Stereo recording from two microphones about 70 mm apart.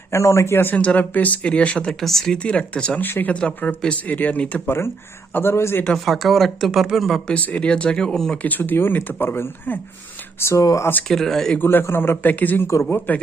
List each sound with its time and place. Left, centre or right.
0.1 s speech: left
0.8 s speech: left
1.9 s speech: centre
3.0 s speech: left
4.6 s speech: left
6.1 s speech: centre
7.3 s speech: centre
8.4 s speech: left
11.1 s speech: centre
11.6 s speech: left